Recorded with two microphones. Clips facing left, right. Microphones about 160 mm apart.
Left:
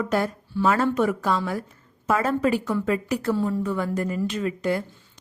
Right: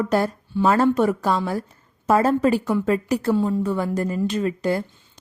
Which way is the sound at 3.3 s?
20° right (ahead or behind).